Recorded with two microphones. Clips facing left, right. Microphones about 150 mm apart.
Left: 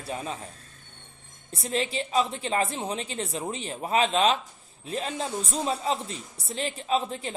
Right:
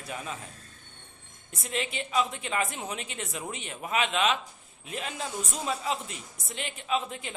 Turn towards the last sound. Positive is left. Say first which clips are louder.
# left 4 dB
turn(degrees=35)  # may be behind; listen again after turning